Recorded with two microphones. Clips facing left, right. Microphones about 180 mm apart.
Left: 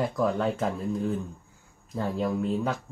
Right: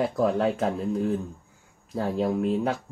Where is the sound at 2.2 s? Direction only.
30° right (ahead or behind).